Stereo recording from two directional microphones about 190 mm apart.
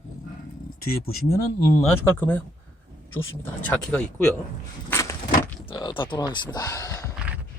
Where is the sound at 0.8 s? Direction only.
50° left (ahead or behind).